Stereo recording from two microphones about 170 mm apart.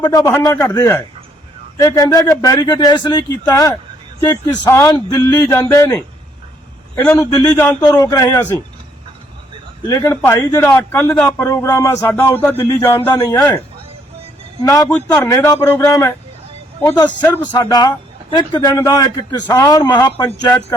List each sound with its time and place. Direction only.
0.0 s speech: 20° left (ahead or behind)
9.9 s speech: 20° left (ahead or behind)
14.6 s speech: 20° left (ahead or behind)
14.8 s speech: 10° left (ahead or behind)
18.3 s speech: 25° left (ahead or behind)